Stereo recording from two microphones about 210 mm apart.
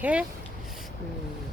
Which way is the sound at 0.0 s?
5° right (ahead or behind).